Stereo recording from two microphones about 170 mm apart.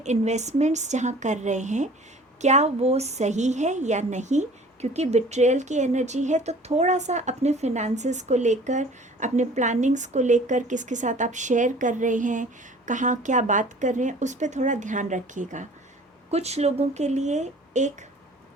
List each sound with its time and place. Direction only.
0.0 s a woman's voice: 40° right (ahead or behind)